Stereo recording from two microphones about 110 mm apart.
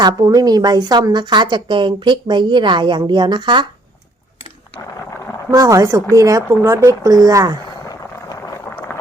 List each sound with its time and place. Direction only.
0.0 s a woman's voice: 35° right (ahead or behind)
5.5 s speech: 30° right (ahead or behind)
7.9 s a sound: 35° left (ahead or behind)
8.9 s boiling: 20° left (ahead or behind)